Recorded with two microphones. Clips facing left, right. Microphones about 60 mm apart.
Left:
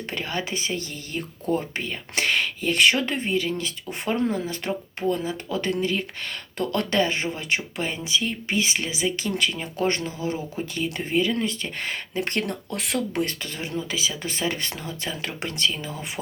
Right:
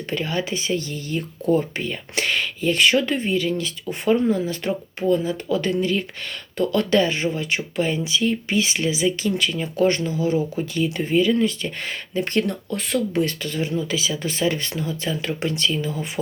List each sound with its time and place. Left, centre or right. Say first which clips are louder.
0.1 s speech: right 5 dB; left
12.7 s speech: right 4 dB; left
13.2 s speech: right 6 dB; left